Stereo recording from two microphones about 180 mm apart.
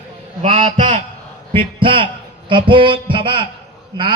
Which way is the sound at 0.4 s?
40° right (ahead or behind).